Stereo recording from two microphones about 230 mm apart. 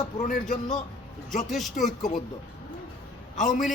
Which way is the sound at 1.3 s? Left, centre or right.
Centre.